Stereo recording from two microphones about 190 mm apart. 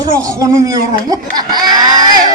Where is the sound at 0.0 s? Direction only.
15° right (ahead or behind).